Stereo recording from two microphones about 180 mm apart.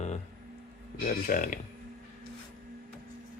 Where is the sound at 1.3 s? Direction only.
45° left (ahead or behind).